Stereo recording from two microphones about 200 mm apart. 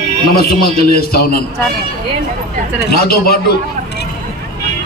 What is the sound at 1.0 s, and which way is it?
Speech, 50° left (ahead or behind).